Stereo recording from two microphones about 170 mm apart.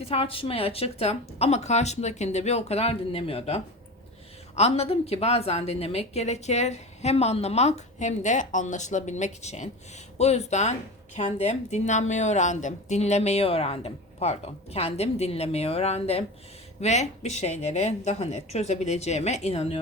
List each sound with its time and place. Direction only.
0.0 s speech: 35° left (ahead or behind)